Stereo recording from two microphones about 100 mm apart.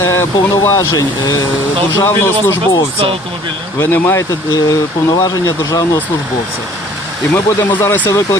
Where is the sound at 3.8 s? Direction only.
25° left (ahead or behind).